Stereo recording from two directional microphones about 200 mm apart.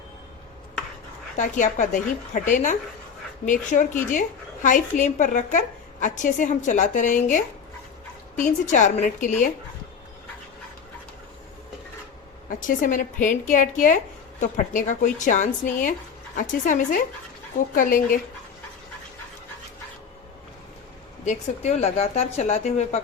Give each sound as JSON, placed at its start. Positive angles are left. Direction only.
{"t": 1.4, "sound": "a woman's voice", "side_deg": 40}
{"t": 8.7, "sound": "a woman's voice", "side_deg": 40}
{"t": 12.5, "sound": "a woman's voice", "side_deg": 40}
{"t": 21.2, "sound": "a woman's voice", "side_deg": 35}